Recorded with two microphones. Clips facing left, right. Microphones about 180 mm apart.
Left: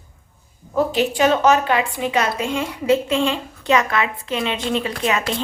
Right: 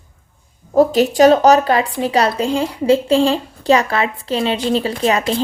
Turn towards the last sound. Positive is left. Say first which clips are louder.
# right 5 dB
turn(degrees=-35)  # may be behind; listen again after turning